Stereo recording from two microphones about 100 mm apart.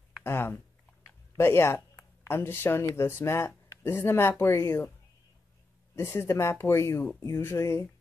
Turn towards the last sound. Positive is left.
turn(degrees=30)  # may be behind; listen again after turning